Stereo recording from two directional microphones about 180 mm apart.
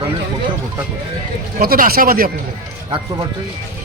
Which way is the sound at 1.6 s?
55° right (ahead or behind).